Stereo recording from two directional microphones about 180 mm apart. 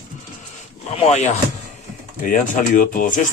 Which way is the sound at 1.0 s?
40° left (ahead or behind).